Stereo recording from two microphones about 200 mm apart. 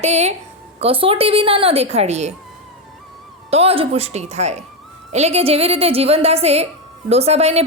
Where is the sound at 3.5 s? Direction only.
30° right (ahead or behind).